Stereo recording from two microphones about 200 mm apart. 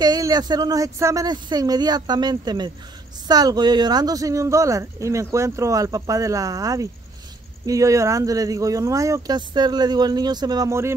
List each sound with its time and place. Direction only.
0.0 s speech: 20° right (ahead or behind)